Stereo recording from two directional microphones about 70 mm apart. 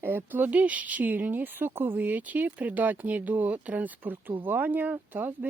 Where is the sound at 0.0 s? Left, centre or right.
Right.